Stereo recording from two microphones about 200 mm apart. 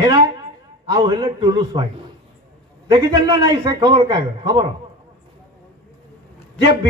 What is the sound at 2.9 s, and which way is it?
A man's voice, 20° right (ahead or behind).